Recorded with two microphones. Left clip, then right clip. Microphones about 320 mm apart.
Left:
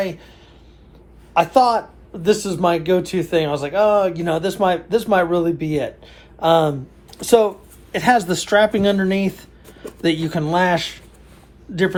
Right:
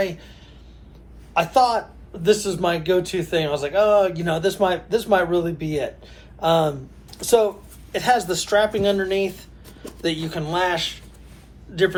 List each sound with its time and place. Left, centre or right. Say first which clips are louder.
0.0 s speech: even; left
1.3 s speech: left 3 dB; left